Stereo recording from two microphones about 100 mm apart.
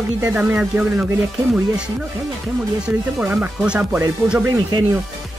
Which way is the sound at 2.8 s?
10° right (ahead or behind).